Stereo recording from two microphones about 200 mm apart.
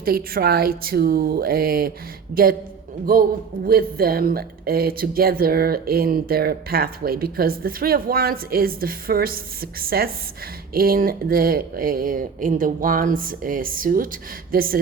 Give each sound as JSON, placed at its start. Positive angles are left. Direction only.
{"t": 0.0, "sound": "speech", "side_deg": -50}
{"t": 3.7, "sound": "speech", "side_deg": -50}